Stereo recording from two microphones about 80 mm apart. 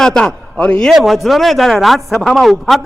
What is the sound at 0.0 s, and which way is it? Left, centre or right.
Speech, centre.